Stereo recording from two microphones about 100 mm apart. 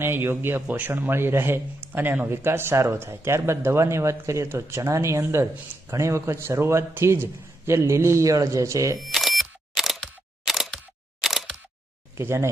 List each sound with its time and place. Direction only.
0.0 s speech: 25° right (ahead or behind)
9.0 s single-lens reflex camera: centre (ahead or behind)
12.1 s speech: 25° right (ahead or behind)